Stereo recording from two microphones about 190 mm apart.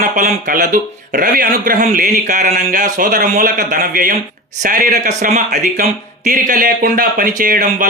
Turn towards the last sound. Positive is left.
turn(degrees=-45)  # may be behind; listen again after turning